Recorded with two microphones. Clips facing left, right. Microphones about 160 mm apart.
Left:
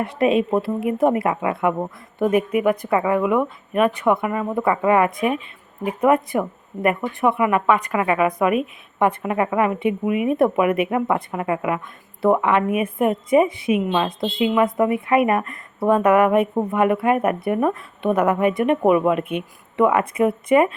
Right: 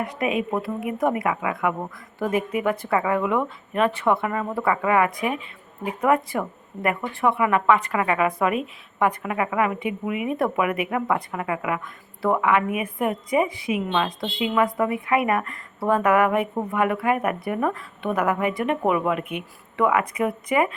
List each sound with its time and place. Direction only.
0.0 s speech: 30° left (ahead or behind)